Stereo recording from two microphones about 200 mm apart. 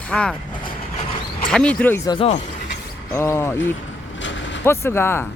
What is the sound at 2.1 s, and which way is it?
Speech, 30° left (ahead or behind).